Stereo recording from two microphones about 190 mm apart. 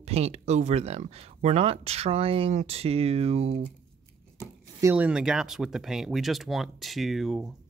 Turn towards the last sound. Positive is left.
turn(degrees=0)  # may be behind; listen again after turning